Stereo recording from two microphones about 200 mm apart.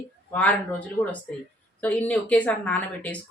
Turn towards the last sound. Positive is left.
turn(degrees=5)  # may be behind; listen again after turning